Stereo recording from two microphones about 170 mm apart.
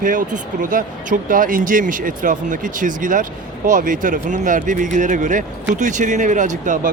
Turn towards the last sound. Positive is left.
turn(degrees=-45)  # may be behind; listen again after turning